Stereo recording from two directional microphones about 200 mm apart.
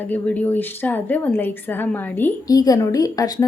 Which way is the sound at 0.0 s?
10° left (ahead or behind).